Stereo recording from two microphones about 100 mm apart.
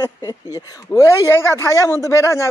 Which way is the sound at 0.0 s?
35° left (ahead or behind).